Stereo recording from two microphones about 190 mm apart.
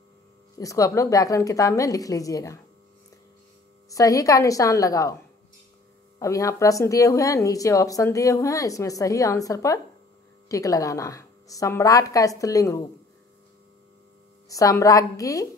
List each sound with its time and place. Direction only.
0.6 s speech: 15° left (ahead or behind)
3.9 s speech: 15° left (ahead or behind)
6.1 s speech: 15° left (ahead or behind)
14.5 s speech: 15° left (ahead or behind)